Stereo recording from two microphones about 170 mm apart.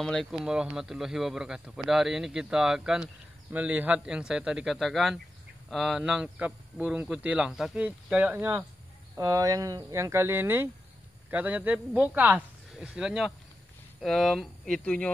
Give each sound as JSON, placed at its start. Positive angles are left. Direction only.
{"t": 0.0, "sound": "speech", "side_deg": 0}